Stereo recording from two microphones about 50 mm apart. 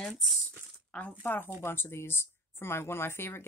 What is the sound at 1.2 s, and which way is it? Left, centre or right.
Speech, left.